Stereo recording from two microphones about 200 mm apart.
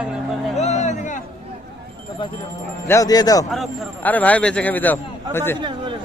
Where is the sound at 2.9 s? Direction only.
15° left (ahead or behind).